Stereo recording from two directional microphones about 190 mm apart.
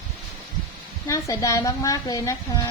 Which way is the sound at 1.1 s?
15° left (ahead or behind).